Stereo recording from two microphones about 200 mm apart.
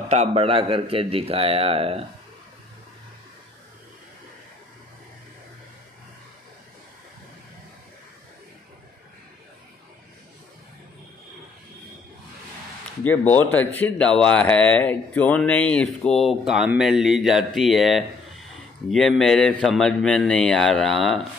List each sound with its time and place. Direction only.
0.1 s a man's voice: 30° right (ahead or behind)
13.0 s speech: 10° left (ahead or behind)